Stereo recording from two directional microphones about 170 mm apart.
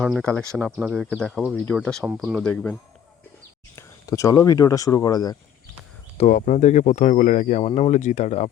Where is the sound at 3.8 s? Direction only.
20° left (ahead or behind).